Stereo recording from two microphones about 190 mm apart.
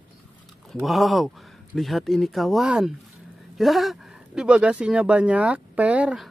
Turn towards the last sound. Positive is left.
turn(degrees=-5)  # may be behind; listen again after turning